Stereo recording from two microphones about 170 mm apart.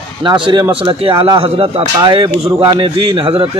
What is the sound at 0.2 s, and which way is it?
A man's voice, 30° right (ahead or behind).